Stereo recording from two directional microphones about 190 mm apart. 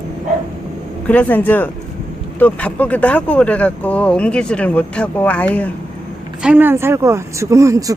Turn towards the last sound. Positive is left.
turn(degrees=-15)  # may be behind; listen again after turning